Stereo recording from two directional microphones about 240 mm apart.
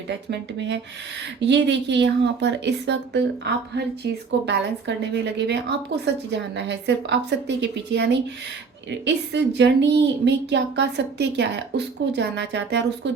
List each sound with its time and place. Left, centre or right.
0.3 s a woman's voice: right